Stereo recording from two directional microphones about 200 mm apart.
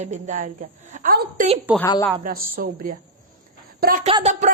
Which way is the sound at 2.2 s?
45° right (ahead or behind).